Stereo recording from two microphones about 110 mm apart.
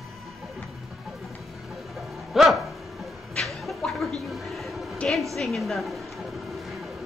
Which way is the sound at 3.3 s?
Centre (ahead or behind).